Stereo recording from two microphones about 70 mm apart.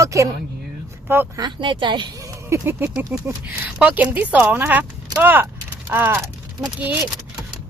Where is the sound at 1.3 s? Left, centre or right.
Right.